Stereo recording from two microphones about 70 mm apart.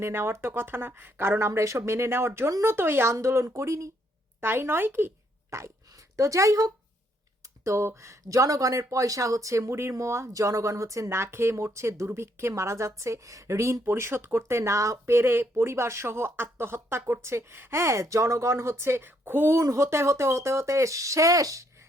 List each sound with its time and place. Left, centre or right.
0.0 s speech: right
4.4 s speech: right